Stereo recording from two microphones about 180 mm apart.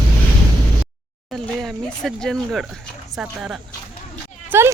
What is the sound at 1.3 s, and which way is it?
Speech, centre (ahead or behind).